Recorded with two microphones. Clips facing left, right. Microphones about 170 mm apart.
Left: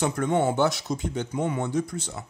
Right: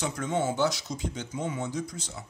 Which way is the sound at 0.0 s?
55° left (ahead or behind).